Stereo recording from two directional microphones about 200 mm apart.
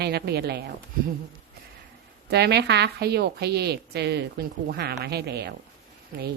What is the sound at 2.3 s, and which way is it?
Speech, 55° right (ahead or behind).